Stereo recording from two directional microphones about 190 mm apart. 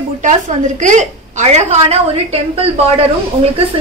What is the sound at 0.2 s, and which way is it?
A woman's voice, 40° right (ahead or behind).